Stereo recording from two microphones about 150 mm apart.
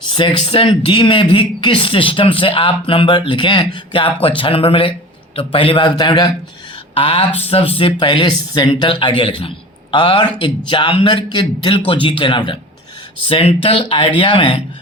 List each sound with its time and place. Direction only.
0.1 s speech: 35° left (ahead or behind)
6.9 s speech: 40° left (ahead or behind)